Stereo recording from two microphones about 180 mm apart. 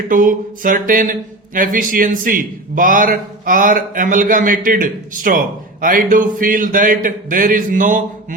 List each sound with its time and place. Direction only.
0.1 s a man's voice: 50° right (ahead or behind)